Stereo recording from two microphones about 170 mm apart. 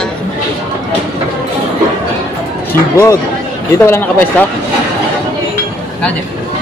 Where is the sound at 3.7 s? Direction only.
15° left (ahead or behind).